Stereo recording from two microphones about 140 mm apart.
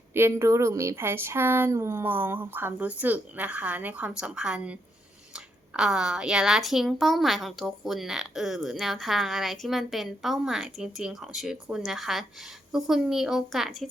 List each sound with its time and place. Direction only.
0.1 s speech: 20° right (ahead or behind); by 13.8 s centre (ahead or behind)